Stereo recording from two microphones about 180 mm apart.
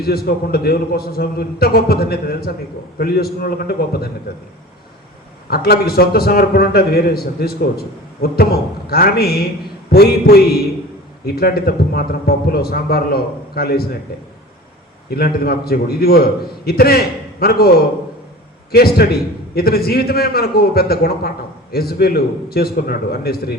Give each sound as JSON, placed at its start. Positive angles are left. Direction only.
{"t": 0.0, "sound": "a man's voice", "side_deg": 60}
{"t": 5.5, "sound": "a man's voice", "side_deg": 60}